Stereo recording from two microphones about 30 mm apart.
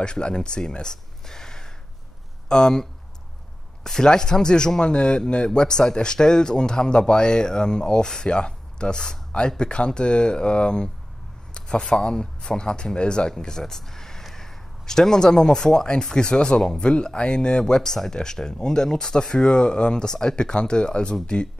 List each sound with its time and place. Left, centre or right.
0.0 s speech: left
4.0 s speech: left
11.9 s speech: left
13.4 s speech: centre
16.8 s speech: left
17.8 s speech: centre; by 21.5 s left